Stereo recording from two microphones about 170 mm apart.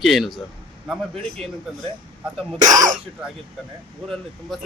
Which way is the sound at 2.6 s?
50° right (ahead or behind).